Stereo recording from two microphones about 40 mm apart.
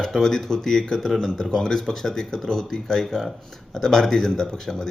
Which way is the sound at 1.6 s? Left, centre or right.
Centre.